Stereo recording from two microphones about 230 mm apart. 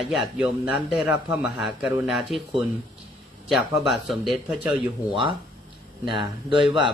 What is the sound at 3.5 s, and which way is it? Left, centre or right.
Speech, centre.